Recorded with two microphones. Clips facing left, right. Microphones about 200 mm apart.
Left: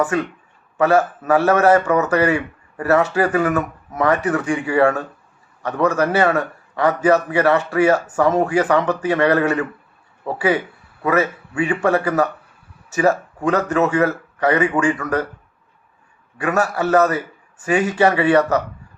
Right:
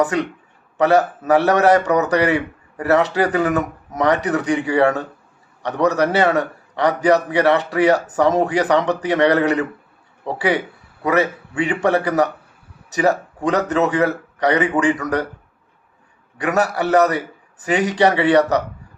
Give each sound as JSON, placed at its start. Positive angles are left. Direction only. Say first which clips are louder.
{"t": 0.0, "sound": "a man's voice", "louder": "right 1 dB", "side_deg": -20}
{"t": 11.0, "sound": "a man's voice", "louder": "even", "side_deg": -20}
{"t": 16.4, "sound": "a man's voice", "louder": "even", "side_deg": -20}